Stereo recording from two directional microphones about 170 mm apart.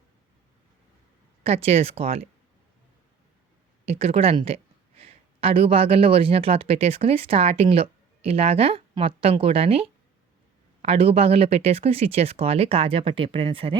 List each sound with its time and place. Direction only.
1.5 s speech: 35° right (ahead or behind)
3.8 s a woman's voice: 35° right (ahead or behind)